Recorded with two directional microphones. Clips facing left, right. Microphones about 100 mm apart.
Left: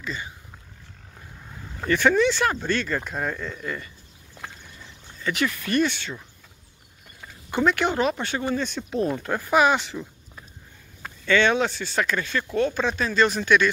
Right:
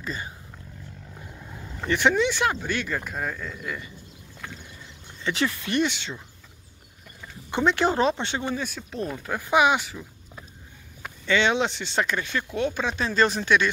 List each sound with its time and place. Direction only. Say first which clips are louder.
0.0 s speech: even; 40° right (ahead or behind)
1.9 s speech: left 2 dB; 20° right (ahead or behind)
5.2 s speech: even; 30° right (ahead or behind)
7.5 s speech: even; 25° right (ahead or behind); by 9.4 s centre (ahead or behind)
9.4 s speech: even; 15° right (ahead or behind)
9.8 s a sound: left 3 dB; 5° right (ahead or behind)
11.1 s speech: left 2 dB; 15° right (ahead or behind)
13.5 s speech: left 3 dB; 25° right (ahead or behind)